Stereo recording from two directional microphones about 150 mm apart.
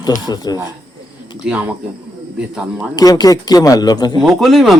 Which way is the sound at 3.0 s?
25° left (ahead or behind).